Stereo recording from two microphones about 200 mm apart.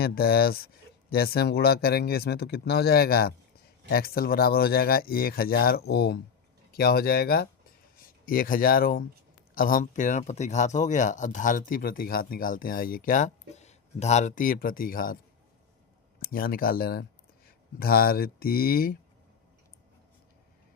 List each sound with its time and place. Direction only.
0.0 s speech: 50° left (ahead or behind)
16.2 s speech: 45° left (ahead or behind)